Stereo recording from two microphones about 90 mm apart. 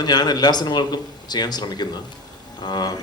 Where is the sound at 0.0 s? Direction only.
50° left (ahead or behind).